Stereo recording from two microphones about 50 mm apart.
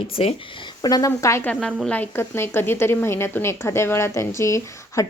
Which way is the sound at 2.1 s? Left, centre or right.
Left.